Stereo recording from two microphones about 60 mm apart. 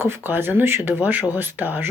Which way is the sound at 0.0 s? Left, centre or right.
Right.